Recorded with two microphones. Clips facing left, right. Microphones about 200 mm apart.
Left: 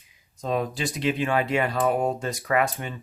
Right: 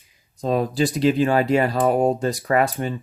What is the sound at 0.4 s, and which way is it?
Speech, 35° right (ahead or behind).